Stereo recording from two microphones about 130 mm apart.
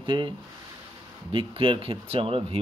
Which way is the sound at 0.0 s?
40° right (ahead or behind).